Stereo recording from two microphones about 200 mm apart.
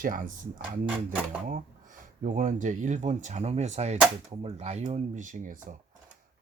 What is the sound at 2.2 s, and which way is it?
Speech, 40° right (ahead or behind).